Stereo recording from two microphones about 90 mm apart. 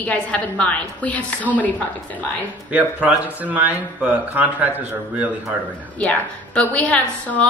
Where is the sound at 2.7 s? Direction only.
15° right (ahead or behind).